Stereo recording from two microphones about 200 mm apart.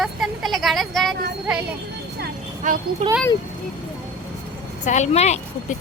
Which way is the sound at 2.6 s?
40° right (ahead or behind).